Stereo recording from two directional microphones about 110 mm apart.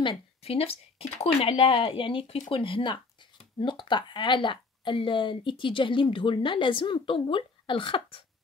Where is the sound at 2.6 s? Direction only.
50° left (ahead or behind).